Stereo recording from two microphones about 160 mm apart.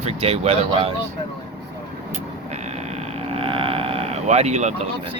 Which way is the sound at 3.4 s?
35° right (ahead or behind).